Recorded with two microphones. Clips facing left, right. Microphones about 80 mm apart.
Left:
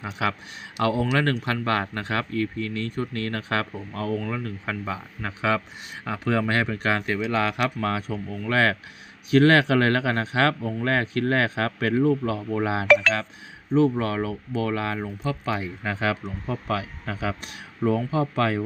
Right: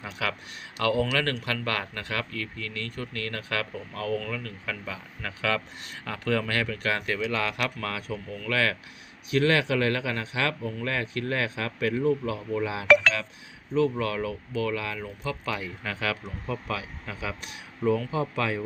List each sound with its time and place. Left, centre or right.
0.0 s speech: left